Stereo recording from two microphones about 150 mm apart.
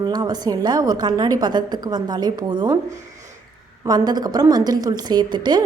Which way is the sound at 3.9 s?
25° right (ahead or behind).